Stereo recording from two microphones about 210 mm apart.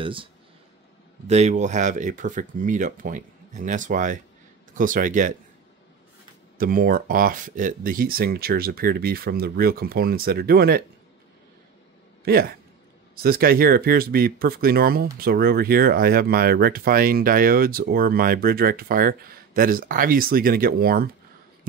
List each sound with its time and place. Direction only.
0.0 s speech: 25° right (ahead or behind)
6.6 s speech: 40° right (ahead or behind)
12.3 s speech: 45° right (ahead or behind)